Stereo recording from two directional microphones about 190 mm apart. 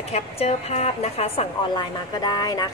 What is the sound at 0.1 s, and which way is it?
A woman's voice, 35° left (ahead or behind).